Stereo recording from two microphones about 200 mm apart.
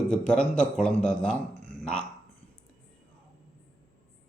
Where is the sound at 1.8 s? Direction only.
5° left (ahead or behind).